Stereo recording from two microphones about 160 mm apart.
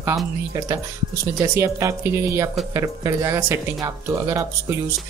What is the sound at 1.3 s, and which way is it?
Speech, 15° right (ahead or behind).